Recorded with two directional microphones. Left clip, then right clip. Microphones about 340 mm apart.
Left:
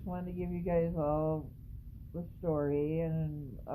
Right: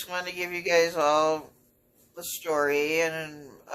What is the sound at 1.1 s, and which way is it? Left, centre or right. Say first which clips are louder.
Speech: right 11 dB; right.